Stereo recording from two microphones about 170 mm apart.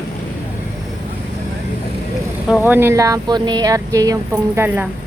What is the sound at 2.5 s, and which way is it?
Speech, 10° right (ahead or behind).